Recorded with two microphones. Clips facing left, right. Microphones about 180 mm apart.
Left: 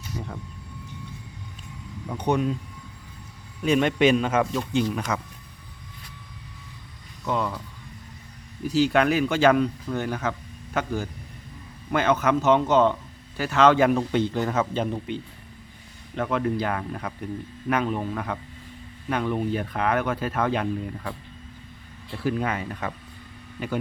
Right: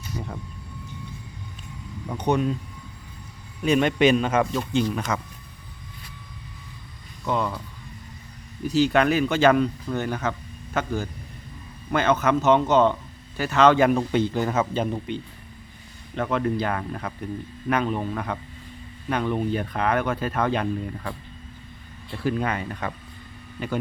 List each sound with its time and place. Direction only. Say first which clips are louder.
2.0 s speech: right 1 dB; 5° left (ahead or behind)
3.6 s speech: right 1 dB; centre (ahead or behind)
7.3 s speech: right 1 dB; centre (ahead or behind)
8.6 s speech: right 1 dB; 5° left (ahead or behind)